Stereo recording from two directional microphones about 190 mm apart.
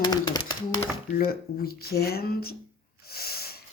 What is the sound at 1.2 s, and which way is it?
Speech, 50° left (ahead or behind).